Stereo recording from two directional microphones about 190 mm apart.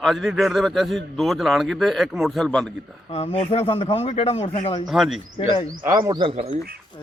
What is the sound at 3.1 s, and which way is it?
Speech, 30° left (ahead or behind).